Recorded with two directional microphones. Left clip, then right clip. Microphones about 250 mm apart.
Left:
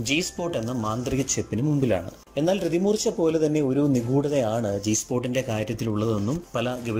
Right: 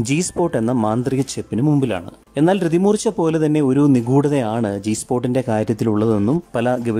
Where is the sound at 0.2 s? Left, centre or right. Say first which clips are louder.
Right 8 dB; right.